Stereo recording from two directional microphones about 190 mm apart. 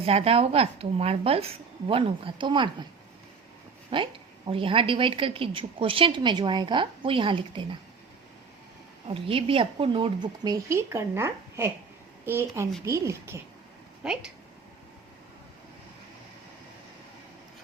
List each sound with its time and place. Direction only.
0.0 s a woman's voice: 30° right (ahead or behind)
3.8 s a woman's voice: 25° right (ahead or behind)
9.0 s a woman's voice: 30° right (ahead or behind)
14.0 s speech: 5° right (ahead or behind)